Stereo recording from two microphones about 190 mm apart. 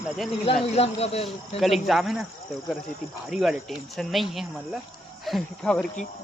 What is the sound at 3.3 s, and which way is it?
Speech, 5° right (ahead or behind).